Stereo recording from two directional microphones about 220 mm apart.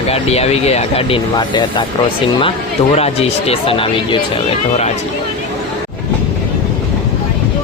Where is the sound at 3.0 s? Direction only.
25° left (ahead or behind).